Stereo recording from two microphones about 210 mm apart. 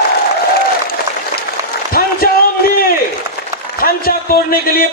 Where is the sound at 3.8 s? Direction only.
45° left (ahead or behind).